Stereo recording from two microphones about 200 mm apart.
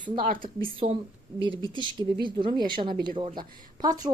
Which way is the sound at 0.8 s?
30° right (ahead or behind).